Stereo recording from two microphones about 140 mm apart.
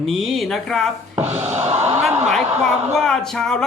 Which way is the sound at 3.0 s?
5° left (ahead or behind).